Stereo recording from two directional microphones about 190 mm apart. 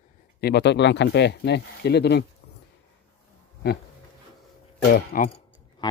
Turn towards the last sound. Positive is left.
turn(degrees=20)  # may be behind; listen again after turning